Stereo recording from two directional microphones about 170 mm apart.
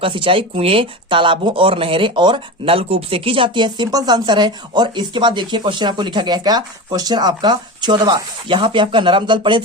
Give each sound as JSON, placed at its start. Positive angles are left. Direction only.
{"t": 0.0, "sound": "speech", "side_deg": -30}